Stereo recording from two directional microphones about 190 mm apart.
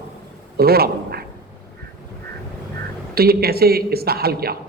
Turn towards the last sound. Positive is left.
turn(degrees=-55)  # may be behind; listen again after turning